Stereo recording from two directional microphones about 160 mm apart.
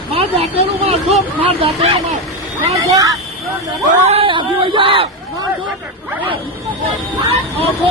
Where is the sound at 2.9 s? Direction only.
20° right (ahead or behind).